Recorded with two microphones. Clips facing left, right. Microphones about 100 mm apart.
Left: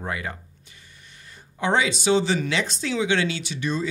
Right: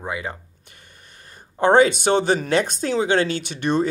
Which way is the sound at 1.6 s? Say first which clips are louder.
Right 8 dB; 50° right (ahead or behind).